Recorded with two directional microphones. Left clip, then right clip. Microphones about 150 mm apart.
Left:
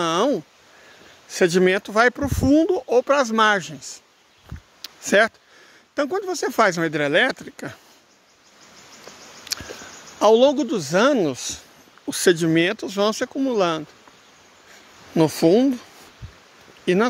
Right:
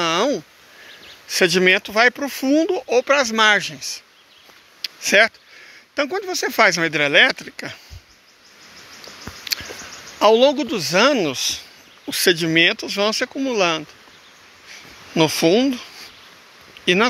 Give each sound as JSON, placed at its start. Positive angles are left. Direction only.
{"t": 0.0, "sound": "a sound", "side_deg": 30}
{"t": 1.2, "sound": "speech", "side_deg": 25}
{"t": 1.9, "sound": "speech", "side_deg": 45}
{"t": 4.8, "sound": "a sound", "side_deg": 45}
{"t": 5.9, "sound": "speech", "side_deg": 40}
{"t": 10.1, "sound": "speech", "side_deg": 30}
{"t": 15.1, "sound": "speech", "side_deg": 30}
{"t": 16.9, "sound": "speech", "side_deg": 30}